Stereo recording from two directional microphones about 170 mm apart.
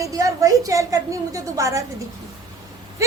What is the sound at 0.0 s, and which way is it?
A woman's voice, 20° right (ahead or behind).